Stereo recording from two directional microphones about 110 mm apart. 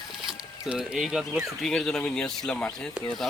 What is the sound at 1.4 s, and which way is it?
Speech, 5° left (ahead or behind).